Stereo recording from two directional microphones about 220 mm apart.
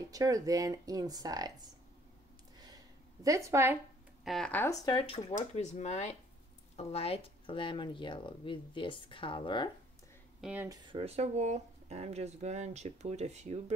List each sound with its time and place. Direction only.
0.1 s speech: 15° right (ahead or behind)
3.3 s speech: 15° right (ahead or behind)
4.2 s speech: centre (ahead or behind)
4.8 s speech: 25° left (ahead or behind)
10.4 s speech: 10° right (ahead or behind)
10.9 s speech: 25° right (ahead or behind)